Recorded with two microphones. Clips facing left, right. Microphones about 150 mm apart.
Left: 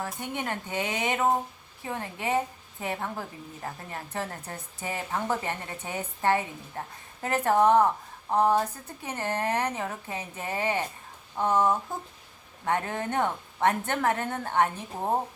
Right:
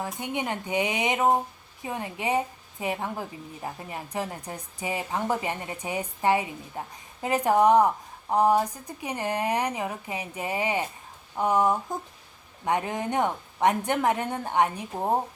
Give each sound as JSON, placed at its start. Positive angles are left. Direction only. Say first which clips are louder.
{"t": 0.0, "sound": "a woman's voice", "louder": "right 2 dB", "side_deg": -15}